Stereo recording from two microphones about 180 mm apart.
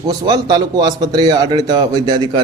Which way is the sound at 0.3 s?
25° right (ahead or behind).